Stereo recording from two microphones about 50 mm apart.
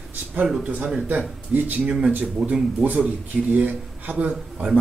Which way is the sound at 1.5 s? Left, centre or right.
Right.